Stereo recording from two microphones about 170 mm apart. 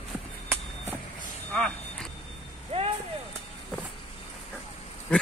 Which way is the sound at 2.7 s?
35° right (ahead or behind).